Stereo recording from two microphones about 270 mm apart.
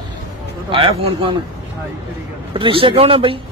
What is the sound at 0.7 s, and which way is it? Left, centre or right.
Speech, centre.